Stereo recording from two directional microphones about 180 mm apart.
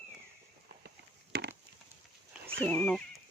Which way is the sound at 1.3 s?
65° right (ahead or behind).